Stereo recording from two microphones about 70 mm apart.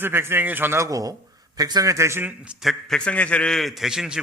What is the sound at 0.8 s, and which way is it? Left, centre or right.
A man's voice, right.